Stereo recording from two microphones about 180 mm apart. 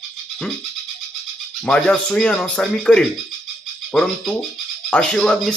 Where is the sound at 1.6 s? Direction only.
5° left (ahead or behind).